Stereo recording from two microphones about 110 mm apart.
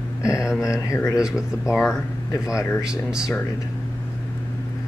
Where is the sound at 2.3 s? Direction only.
30° left (ahead or behind).